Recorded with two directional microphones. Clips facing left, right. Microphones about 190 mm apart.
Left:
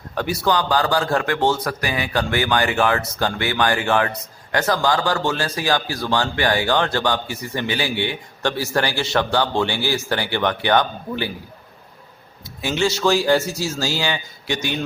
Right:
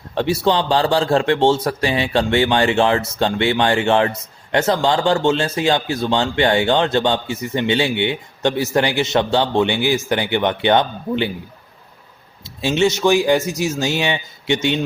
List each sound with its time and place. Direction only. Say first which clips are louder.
0.1 s a man's voice: right 3 dB; 25° right (ahead or behind)
12.6 s a man's voice: right 4 dB; 20° right (ahead or behind)